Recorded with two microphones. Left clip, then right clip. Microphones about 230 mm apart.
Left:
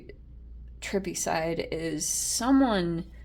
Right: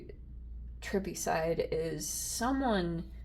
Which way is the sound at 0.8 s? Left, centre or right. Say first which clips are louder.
Left 5 dB; left.